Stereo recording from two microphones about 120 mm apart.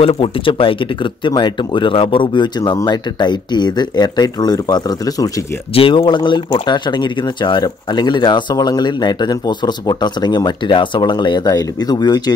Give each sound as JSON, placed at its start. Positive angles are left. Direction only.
{"t": 0.0, "sound": "speech", "side_deg": 50}
{"t": 5.8, "sound": "speech", "side_deg": 50}